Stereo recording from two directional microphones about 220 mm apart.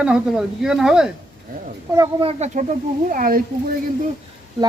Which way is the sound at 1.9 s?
15° right (ahead or behind).